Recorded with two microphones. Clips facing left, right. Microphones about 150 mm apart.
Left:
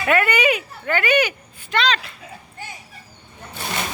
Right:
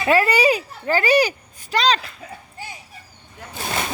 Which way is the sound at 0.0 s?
30° right (ahead or behind).